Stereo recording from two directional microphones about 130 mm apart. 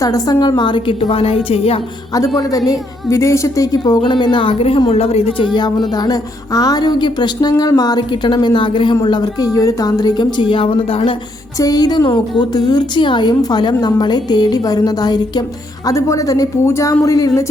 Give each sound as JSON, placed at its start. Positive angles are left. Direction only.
{"t": 0.0, "sound": "a woman's voice", "side_deg": 30}
{"t": 2.1, "sound": "a woman's voice", "side_deg": 25}
{"t": 5.5, "sound": "a woman's voice", "side_deg": 35}
{"t": 11.6, "sound": "a woman's voice", "side_deg": 30}